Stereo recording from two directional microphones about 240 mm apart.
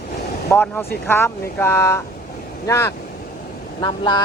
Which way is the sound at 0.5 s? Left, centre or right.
Centre.